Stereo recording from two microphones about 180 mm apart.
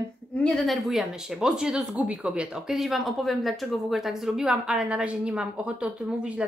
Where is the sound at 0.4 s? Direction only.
Centre (ahead or behind).